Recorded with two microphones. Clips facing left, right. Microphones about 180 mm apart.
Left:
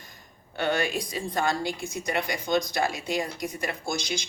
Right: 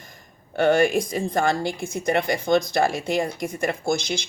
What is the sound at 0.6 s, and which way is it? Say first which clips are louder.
Speech: right 9 dB; 50° right (ahead or behind).